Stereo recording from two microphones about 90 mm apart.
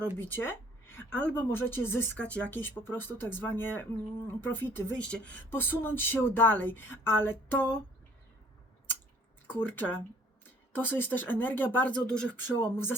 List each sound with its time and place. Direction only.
0.2 s a sound: 25° left (ahead or behind)
1.1 s speech: 15° left (ahead or behind)
1.5 s speech: 25° left (ahead or behind)
4.9 s speech: 10° left (ahead or behind)
5.5 s speech: 25° left (ahead or behind)
9.5 s speech: 20° left (ahead or behind)
12.0 s speech: 10° left (ahead or behind)
12.5 s speech: 25° left (ahead or behind)